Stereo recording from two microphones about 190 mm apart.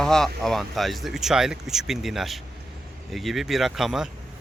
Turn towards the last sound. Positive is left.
turn(degrees=0)  # may be behind; listen again after turning